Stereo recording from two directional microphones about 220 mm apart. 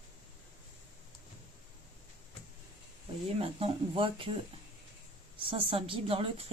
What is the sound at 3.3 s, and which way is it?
Speech, 25° right (ahead or behind).